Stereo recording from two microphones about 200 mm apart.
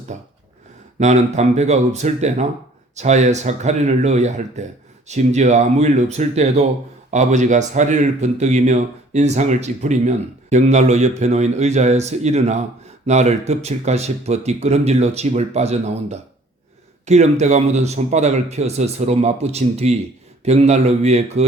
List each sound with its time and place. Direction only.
0.1 s speech: 40° right (ahead or behind)